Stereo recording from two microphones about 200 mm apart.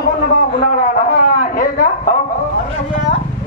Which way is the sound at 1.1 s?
45° left (ahead or behind).